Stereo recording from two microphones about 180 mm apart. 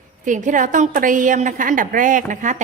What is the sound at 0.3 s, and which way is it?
A woman's voice, 45° right (ahead or behind).